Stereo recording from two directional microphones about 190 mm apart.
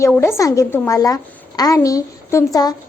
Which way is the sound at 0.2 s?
15° left (ahead or behind).